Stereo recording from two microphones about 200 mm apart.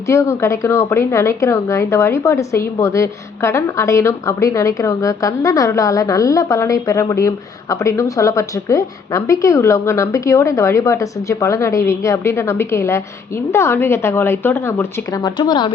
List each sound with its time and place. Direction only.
0.1 s a woman's voice: 15° left (ahead or behind)